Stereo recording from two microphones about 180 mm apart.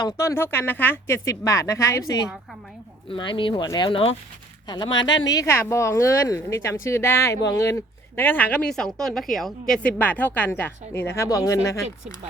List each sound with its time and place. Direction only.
0.2 s a woman's voice: 15° left (ahead or behind)
5.0 s a woman's voice: 90° left
5.3 s a woman's voice: 15° left (ahead or behind)